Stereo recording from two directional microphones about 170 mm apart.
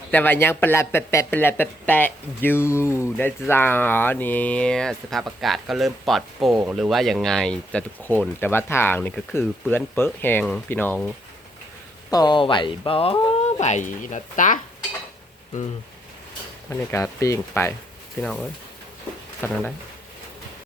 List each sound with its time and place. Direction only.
0.1 s speech: 10° left (ahead or behind)
12.1 s speech: 25° left (ahead or behind); by 14.6 s 50° left (ahead or behind)
16.6 s speech: 15° left (ahead or behind)